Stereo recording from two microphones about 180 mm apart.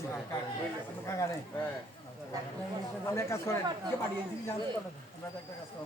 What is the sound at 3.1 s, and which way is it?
Speech, 15° left (ahead or behind).